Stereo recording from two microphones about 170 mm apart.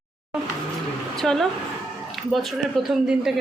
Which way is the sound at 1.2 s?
Centre (ahead or behind).